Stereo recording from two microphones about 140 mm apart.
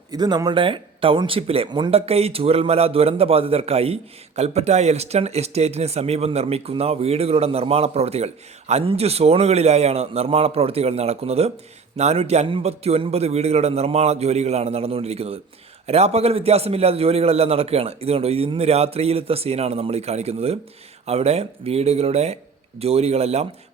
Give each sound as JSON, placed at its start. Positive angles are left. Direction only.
{"t": 0.1, "sound": "speech", "side_deg": -30}